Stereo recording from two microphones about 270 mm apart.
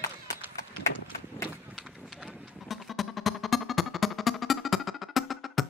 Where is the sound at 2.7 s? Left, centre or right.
Centre.